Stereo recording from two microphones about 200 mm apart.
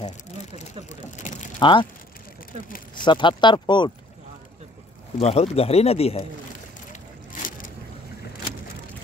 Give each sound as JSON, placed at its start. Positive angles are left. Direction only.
{"t": 1.3, "sound": "vehicle", "side_deg": 35}
{"t": 1.6, "sound": "speech", "side_deg": 25}
{"t": 3.0, "sound": "speech", "side_deg": 25}
{"t": 5.2, "sound": "speech", "side_deg": 30}
{"t": 7.4, "sound": "boat", "side_deg": 45}